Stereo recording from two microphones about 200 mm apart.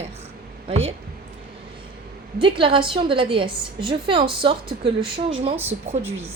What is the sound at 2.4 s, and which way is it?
A woman's voice, 25° right (ahead or behind).